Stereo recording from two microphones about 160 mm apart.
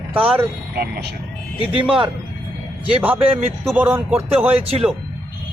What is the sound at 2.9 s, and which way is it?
Speech, 10° right (ahead or behind).